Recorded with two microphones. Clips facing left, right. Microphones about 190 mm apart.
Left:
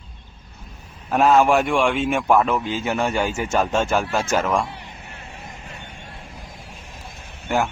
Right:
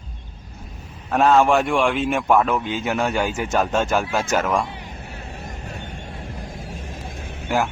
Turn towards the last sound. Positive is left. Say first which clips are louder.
# even
turn(degrees=0)  # may be behind; listen again after turning